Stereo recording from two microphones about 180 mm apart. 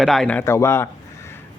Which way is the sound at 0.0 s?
Centre (ahead or behind).